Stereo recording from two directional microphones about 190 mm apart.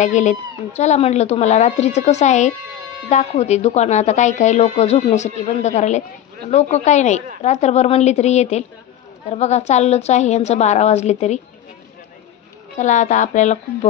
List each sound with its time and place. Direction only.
0.0 s a woman's voice: 40° left (ahead or behind)
12.7 s a woman's voice: 40° left (ahead or behind)